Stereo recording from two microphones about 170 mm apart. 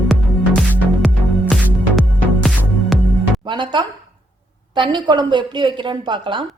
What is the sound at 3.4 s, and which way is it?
Music, 30° right (ahead or behind).